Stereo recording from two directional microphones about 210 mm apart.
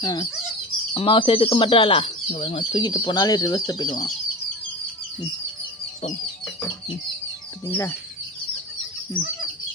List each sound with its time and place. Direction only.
0.0 s speech: 20° left (ahead or behind)
7.7 s speech: 10° left (ahead or behind)